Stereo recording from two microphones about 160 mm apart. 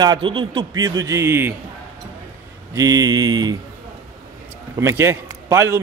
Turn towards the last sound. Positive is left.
turn(degrees=-20)  # may be behind; listen again after turning